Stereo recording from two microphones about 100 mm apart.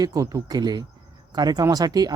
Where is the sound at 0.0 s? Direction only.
35° right (ahead or behind).